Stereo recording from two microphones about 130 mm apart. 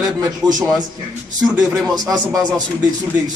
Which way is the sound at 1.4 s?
5° right (ahead or behind).